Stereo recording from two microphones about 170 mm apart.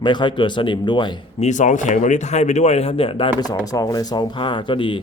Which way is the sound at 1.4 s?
45° left (ahead or behind).